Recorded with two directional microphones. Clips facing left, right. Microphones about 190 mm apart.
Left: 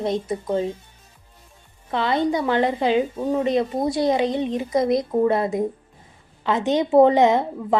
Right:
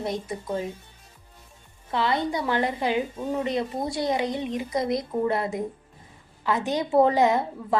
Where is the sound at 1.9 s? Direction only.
20° left (ahead or behind).